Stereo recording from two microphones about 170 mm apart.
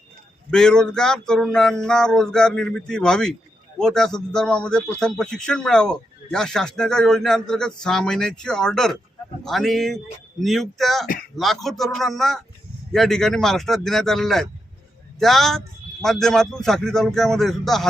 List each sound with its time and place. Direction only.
0.5 s speech: 5° left (ahead or behind)